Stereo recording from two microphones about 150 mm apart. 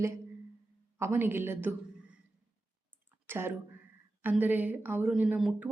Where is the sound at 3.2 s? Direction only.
15° right (ahead or behind).